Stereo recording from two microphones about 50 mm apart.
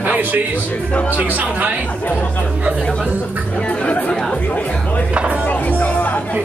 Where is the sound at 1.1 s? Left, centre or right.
Right.